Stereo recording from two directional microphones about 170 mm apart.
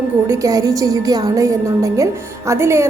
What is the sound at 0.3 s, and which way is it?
A woman's voice, 20° right (ahead or behind).